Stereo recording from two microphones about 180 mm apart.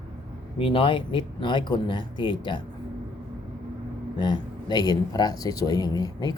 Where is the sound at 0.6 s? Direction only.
30° left (ahead or behind).